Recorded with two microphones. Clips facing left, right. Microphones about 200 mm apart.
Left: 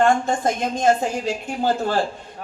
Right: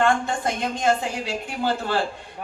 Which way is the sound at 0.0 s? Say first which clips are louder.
Left 3 dB; 45° left (ahead or behind).